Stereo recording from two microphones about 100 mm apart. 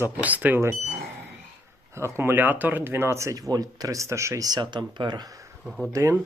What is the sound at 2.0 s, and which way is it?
Speech, 25° right (ahead or behind).